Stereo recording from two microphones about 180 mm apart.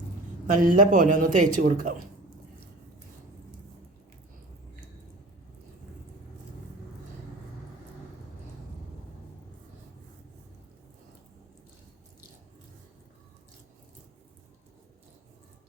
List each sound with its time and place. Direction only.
0.5 s a man's voice: 50° right (ahead or behind)